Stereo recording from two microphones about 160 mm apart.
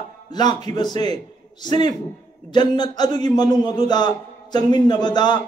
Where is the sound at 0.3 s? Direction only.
25° left (ahead or behind).